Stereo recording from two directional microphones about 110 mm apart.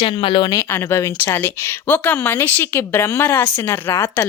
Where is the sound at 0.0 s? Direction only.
55° left (ahead or behind).